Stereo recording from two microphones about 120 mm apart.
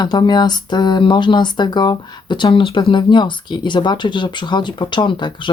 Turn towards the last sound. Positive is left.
turn(degrees=40)  # may be behind; listen again after turning